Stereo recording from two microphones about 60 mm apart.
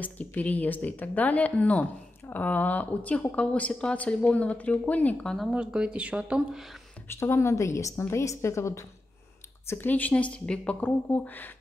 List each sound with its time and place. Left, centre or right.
0.3 s speech: left
5.5 s speech: centre
6.5 s speech: centre
7.1 s a woman's voice: left
9.8 s speech: left